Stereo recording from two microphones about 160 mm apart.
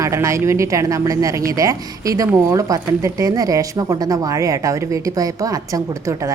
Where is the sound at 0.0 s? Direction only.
20° right (ahead or behind).